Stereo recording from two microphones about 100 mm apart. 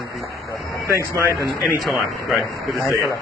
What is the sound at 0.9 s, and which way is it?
Speech, 30° left (ahead or behind).